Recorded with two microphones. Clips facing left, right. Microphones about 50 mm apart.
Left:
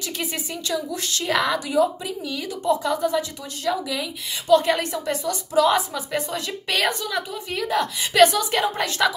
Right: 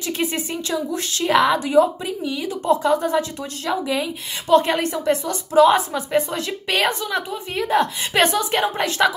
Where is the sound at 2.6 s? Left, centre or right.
Right.